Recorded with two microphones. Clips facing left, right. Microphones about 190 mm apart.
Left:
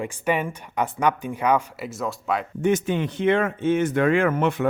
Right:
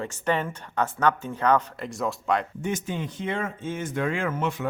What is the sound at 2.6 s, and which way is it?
Speech, 65° left (ahead or behind).